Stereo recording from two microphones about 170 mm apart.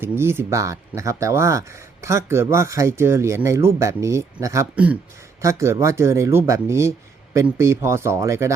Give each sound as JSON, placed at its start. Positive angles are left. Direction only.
{"t": 0.0, "sound": "speech", "side_deg": -15}